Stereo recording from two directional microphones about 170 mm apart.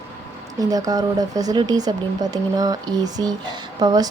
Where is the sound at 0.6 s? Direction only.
20° right (ahead or behind).